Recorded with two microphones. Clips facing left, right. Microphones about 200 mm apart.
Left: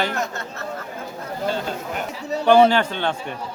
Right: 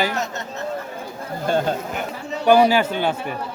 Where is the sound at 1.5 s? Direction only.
50° right (ahead or behind).